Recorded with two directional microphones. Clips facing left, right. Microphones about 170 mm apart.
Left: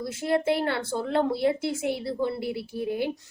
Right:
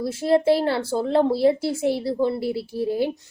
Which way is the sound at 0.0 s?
30° right (ahead or behind).